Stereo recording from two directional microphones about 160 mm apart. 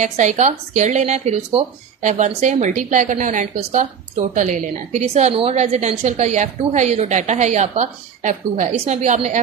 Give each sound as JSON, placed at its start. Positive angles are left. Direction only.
{"t": 0.0, "sound": "a woman's voice", "side_deg": -45}